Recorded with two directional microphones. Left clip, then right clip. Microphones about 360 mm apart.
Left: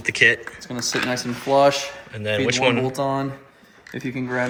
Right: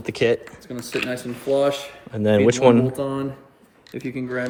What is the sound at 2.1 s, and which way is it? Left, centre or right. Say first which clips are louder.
Speech: right 4 dB; centre.